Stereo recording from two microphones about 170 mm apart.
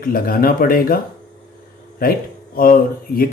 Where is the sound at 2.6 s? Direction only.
60° left (ahead or behind).